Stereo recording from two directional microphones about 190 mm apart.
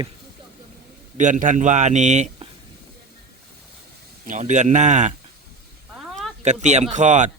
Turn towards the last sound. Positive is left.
turn(degrees=-40)  # may be behind; listen again after turning